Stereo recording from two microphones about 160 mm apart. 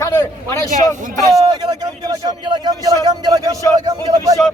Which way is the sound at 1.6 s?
25° right (ahead or behind).